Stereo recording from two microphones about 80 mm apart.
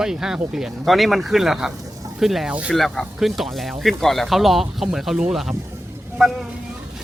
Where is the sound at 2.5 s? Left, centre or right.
Centre.